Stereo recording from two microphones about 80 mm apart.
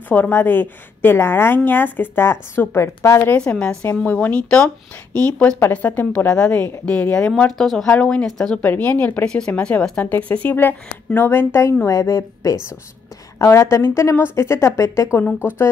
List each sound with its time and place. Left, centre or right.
0.1 s a woman's voice: left
3.3 s a woman's voice: centre; by 11.7 s left
11.8 s a woman's voice: left